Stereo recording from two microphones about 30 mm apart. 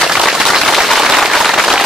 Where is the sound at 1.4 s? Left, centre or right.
Centre.